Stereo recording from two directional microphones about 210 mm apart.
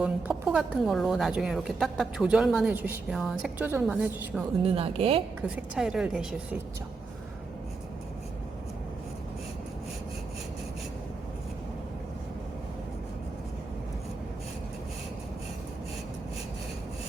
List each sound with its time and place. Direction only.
0.0 s a woman's voice: 5° right (ahead or behind)
4.6 s speech: 25° right (ahead or behind)
5.7 s a woman's voice: 5° right (ahead or behind)